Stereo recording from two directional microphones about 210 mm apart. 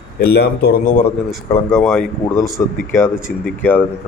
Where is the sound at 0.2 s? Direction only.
50° left (ahead or behind).